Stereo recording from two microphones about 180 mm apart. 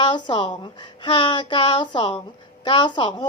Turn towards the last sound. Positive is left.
turn(degrees=25)  # may be behind; listen again after turning